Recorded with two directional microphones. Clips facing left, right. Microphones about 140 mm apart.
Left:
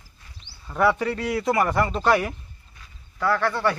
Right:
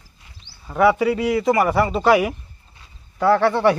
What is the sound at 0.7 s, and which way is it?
A man's voice, 5° right (ahead or behind).